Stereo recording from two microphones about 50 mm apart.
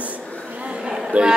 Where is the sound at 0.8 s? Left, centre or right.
Centre.